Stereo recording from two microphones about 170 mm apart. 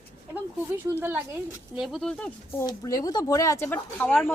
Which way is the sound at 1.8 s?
Centre (ahead or behind).